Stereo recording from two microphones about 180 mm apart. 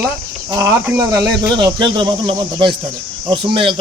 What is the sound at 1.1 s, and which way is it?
Speech, centre (ahead or behind).